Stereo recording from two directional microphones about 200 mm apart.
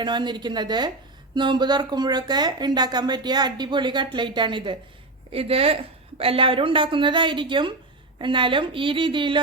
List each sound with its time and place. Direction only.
0.0 s speech: 20° right (ahead or behind)